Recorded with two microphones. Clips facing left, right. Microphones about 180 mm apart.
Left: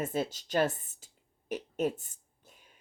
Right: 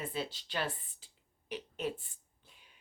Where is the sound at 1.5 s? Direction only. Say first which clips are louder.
Left 6 dB; 45° left (ahead or behind).